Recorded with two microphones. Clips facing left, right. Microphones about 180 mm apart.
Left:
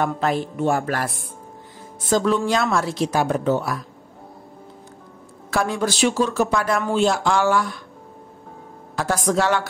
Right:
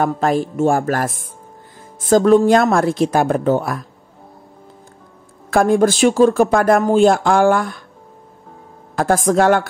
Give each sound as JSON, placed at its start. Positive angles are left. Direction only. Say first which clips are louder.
{"t": 0.0, "sound": "speech", "louder": "right 5 dB", "side_deg": -45}
{"t": 5.5, "sound": "speech", "louder": "right 9 dB", "side_deg": -50}
{"t": 8.9, "sound": "speech", "louder": "right 6 dB", "side_deg": -50}